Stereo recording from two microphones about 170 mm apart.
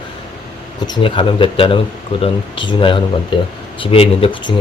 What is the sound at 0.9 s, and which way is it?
Speech, 30° left (ahead or behind).